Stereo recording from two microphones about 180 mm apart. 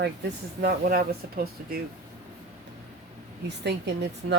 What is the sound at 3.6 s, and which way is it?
Speech, 70° right (ahead or behind).